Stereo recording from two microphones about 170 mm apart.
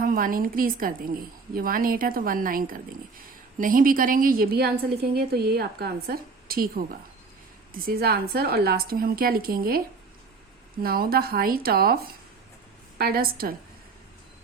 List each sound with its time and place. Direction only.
0.0 s a woman's voice: 55° right (ahead or behind)
10.8 s a woman's voice: 60° right (ahead or behind)
13.0 s a woman's voice: 65° right (ahead or behind)